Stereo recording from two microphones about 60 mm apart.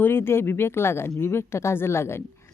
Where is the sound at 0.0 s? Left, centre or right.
Left.